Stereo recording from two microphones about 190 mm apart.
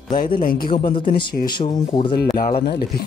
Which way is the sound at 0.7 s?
25° left (ahead or behind).